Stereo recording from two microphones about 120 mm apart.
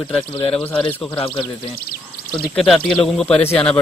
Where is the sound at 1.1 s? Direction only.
45° left (ahead or behind).